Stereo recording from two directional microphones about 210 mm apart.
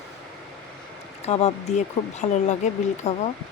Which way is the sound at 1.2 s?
30° left (ahead or behind).